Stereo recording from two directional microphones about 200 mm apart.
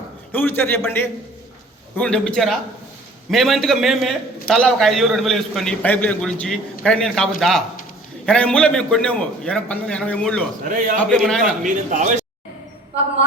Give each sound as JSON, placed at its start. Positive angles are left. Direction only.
{"t": 0.3, "sound": "a man's voice", "side_deg": 10}
{"t": 10.7, "sound": "speech", "side_deg": -40}
{"t": 11.1, "sound": "a man's voice", "side_deg": 5}
{"t": 11.6, "sound": "speech", "side_deg": -40}